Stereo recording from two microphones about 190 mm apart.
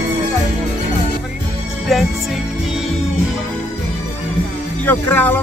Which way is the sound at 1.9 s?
Centre (ahead or behind).